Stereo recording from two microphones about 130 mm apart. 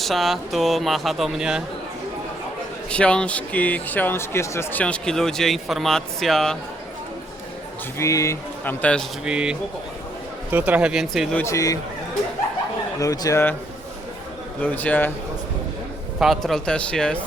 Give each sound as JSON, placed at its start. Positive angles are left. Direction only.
{"t": 0.0, "sound": "speech", "side_deg": 0}
{"t": 2.9, "sound": "speech", "side_deg": 10}
{"t": 7.9, "sound": "speech", "side_deg": 25}
{"t": 8.6, "sound": "speech", "side_deg": 10}
{"t": 9.2, "sound": "speech", "side_deg": -5}
{"t": 11.4, "sound": "speech", "side_deg": 25}
{"t": 13.0, "sound": "speech", "side_deg": 25}
{"t": 14.6, "sound": "speech", "side_deg": 10}
{"t": 16.2, "sound": "speech", "side_deg": 0}